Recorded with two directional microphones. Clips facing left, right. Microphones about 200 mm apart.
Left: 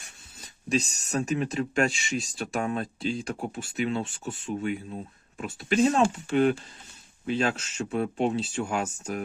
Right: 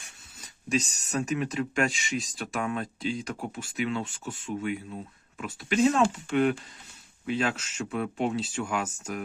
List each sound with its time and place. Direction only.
0.3 s speech: 35° left (ahead or behind)
5.4 s speech: 35° left (ahead or behind)